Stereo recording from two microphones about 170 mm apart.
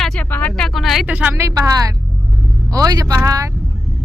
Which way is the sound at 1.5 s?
20° right (ahead or behind).